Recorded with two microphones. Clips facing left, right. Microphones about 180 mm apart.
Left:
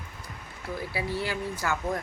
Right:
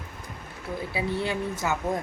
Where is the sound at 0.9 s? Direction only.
20° right (ahead or behind).